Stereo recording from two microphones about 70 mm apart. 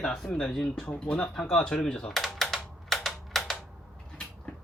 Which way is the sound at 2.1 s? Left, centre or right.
Centre.